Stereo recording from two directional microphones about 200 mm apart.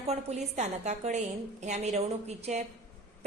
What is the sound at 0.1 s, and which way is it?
A woman's voice, 35° right (ahead or behind).